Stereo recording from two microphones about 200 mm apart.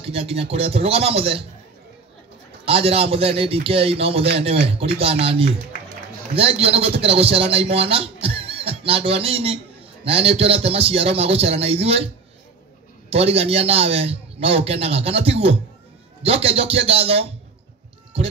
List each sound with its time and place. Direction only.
0.0 s a man's voice: 30° right (ahead or behind)
2.6 s a man's voice: 30° right (ahead or behind)
13.1 s a man's voice: 30° right (ahead or behind)